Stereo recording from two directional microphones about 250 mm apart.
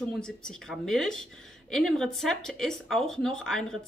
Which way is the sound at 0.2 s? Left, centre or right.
Centre.